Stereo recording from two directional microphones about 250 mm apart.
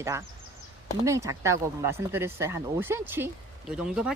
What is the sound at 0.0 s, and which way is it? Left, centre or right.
Speech, centre.